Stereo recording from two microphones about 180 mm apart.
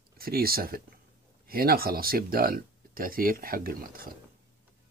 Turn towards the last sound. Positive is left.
turn(degrees=-55)  # may be behind; listen again after turning